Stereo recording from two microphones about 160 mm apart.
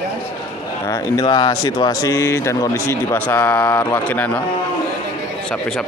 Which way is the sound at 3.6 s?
20° left (ahead or behind).